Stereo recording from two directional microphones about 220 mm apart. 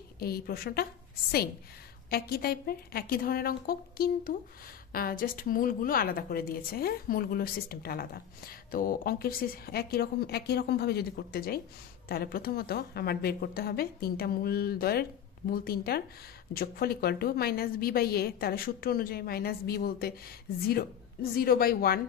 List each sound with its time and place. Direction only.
0.2 s a woman's voice: 45° left (ahead or behind)
2.0 s a woman's voice: 45° left (ahead or behind)